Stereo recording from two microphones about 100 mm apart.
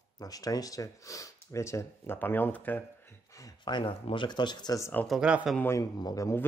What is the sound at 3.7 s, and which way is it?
Speech, 55° left (ahead or behind).